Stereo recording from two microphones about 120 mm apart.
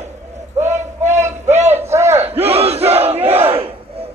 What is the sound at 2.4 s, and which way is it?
Crowd, 55° right (ahead or behind).